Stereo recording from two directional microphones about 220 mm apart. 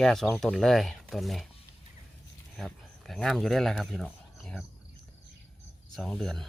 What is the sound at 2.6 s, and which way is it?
Speech, centre (ahead or behind).